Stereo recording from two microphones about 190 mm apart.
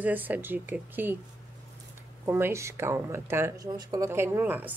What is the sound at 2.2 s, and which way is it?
Speech, 15° right (ahead or behind).